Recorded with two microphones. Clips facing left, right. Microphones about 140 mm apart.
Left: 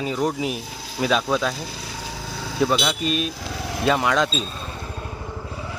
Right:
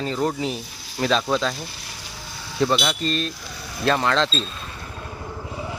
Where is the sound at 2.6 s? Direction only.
5° left (ahead or behind).